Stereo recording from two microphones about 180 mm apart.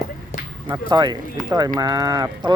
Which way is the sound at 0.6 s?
20° right (ahead or behind).